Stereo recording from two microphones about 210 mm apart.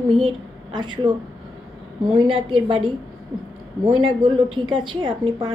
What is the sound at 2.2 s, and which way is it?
Speech, 25° right (ahead or behind).